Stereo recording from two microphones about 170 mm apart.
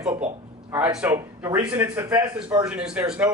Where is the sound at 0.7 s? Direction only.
10° right (ahead or behind).